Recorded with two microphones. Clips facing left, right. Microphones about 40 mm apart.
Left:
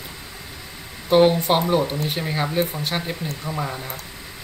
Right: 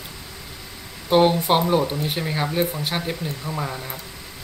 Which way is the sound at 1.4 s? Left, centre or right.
Centre.